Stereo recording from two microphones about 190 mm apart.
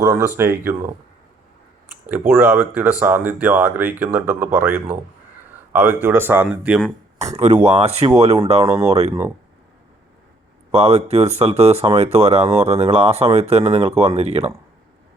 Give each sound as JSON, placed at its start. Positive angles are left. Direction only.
{"t": 0.0, "sound": "speech", "side_deg": -15}
{"t": 2.3, "sound": "speech", "side_deg": -10}
{"t": 7.6, "sound": "speech", "side_deg": -35}
{"t": 8.6, "sound": "speech", "side_deg": -15}
{"t": 10.7, "sound": "speech", "side_deg": -35}